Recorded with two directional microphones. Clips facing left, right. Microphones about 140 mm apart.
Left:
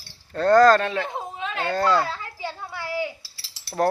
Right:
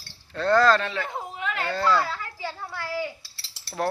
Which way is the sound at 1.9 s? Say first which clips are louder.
Left 2 dB; 20° left (ahead or behind).